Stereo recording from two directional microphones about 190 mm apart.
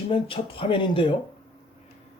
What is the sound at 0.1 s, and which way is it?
Speech, 25° left (ahead or behind).